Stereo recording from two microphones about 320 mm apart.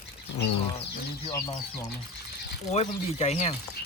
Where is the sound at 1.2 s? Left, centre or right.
Centre.